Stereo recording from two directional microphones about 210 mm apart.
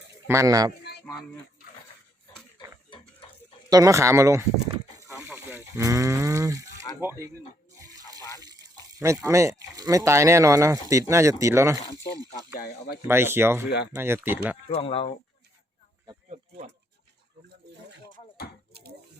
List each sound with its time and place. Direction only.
0.3 s speech: 15° right (ahead or behind)
3.7 s speech: 15° right (ahead or behind)
5.2 s sheep: 10° right (ahead or behind)
7.0 s speech: 10° right (ahead or behind)
8.4 s speech: 20° right (ahead or behind)
12.5 s speech: 45° left (ahead or behind)
13.1 s speech: 10° right (ahead or behind)
14.7 s speech: 25° left (ahead or behind)